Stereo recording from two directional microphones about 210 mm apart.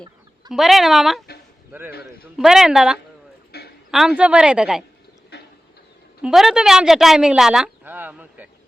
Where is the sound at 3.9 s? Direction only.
Centre (ahead or behind).